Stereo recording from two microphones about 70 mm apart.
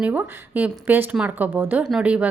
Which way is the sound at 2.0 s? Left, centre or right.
Centre.